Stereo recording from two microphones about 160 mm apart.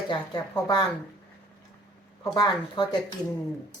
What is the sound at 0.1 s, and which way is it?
Speech, 25° left (ahead or behind).